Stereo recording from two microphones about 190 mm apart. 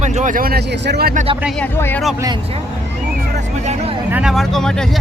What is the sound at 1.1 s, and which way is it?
Speech, 35° right (ahead or behind).